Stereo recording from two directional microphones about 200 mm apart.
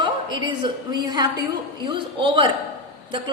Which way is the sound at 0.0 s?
20° right (ahead or behind).